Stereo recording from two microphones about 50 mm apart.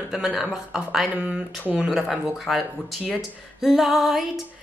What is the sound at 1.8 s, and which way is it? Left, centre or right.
Speech, centre.